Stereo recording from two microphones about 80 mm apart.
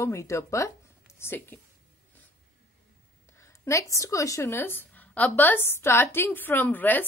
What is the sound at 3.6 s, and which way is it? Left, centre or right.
A woman's voice, left.